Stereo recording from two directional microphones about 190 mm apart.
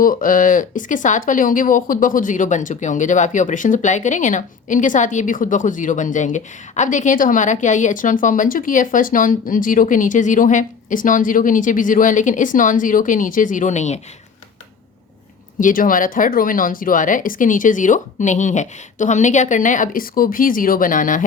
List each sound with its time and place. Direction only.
0.0 s speech: 45° left (ahead or behind)
15.6 s speech: 45° left (ahead or behind)